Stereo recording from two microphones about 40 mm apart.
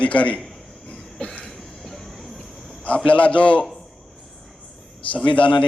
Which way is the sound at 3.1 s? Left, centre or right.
Left.